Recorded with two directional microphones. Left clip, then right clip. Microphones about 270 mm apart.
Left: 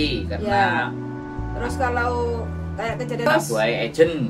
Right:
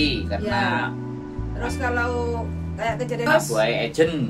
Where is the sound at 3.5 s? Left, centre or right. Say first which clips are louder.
Left 2 dB; centre.